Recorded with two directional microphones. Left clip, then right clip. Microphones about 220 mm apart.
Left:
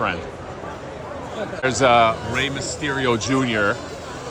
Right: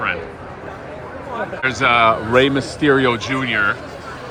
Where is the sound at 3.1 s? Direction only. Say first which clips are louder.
Right 2 dB; 10° left (ahead or behind).